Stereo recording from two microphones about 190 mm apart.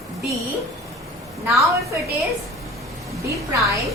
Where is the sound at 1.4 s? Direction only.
Centre (ahead or behind).